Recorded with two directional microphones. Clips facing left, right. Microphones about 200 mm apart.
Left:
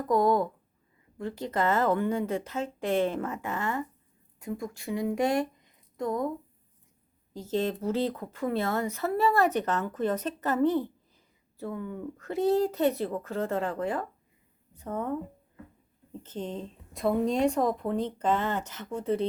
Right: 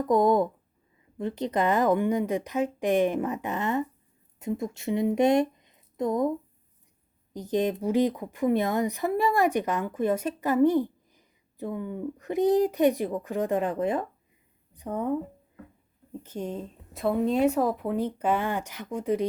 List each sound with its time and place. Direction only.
0.0 s speech: 20° right (ahead or behind)
7.3 s a woman's voice: 15° right (ahead or behind)
16.2 s speech: 10° right (ahead or behind)